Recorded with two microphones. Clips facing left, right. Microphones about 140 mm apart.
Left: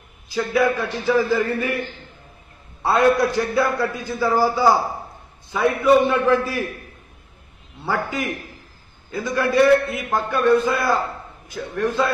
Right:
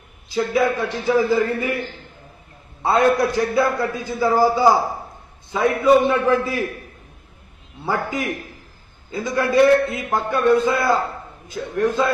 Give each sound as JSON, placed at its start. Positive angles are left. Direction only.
{"t": 0.3, "sound": "a man's voice", "side_deg": -15}
{"t": 2.8, "sound": "a man's voice", "side_deg": -15}
{"t": 7.8, "sound": "a man's voice", "side_deg": -15}